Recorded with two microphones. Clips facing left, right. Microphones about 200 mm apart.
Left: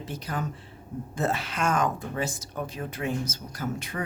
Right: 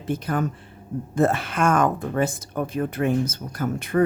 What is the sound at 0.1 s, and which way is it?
Speech, 55° right (ahead or behind).